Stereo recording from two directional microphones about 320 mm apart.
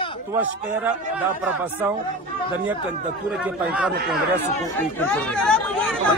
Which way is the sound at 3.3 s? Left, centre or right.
Centre.